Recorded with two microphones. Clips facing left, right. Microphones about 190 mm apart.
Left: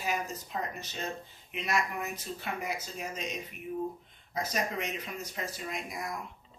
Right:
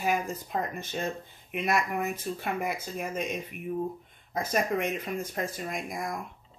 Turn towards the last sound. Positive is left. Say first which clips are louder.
# right 4 dB
turn(degrees=-50)  # may be behind; listen again after turning